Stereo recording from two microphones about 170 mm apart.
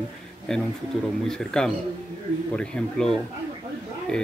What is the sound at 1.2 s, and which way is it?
Speech, 5° left (ahead or behind).